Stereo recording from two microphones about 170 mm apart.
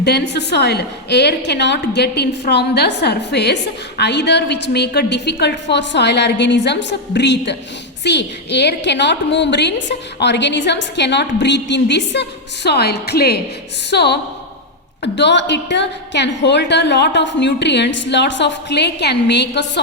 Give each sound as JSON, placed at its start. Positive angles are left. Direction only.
{"t": 0.0, "sound": "a woman's voice", "side_deg": 80}
{"t": 15.0, "sound": "a woman's voice", "side_deg": 90}